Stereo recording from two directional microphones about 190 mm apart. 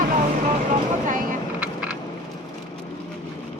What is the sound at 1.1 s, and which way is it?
Speech, 45° right (ahead or behind).